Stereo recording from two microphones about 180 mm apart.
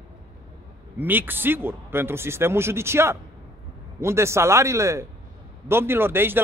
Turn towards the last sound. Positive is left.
turn(degrees=-10)  # may be behind; listen again after turning